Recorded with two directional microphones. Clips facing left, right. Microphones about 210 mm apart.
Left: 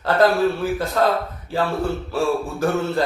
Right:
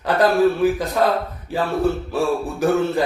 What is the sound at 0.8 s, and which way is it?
Speech, 15° right (ahead or behind).